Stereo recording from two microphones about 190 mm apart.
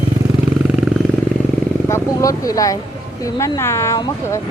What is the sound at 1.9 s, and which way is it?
Speech, 15° left (ahead or behind).